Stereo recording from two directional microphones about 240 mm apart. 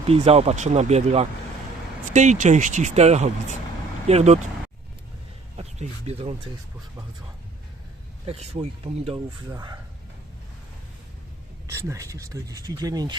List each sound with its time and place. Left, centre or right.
0.0 s speech: right
5.5 s speech: right
8.3 s speech: right
11.7 s speech: centre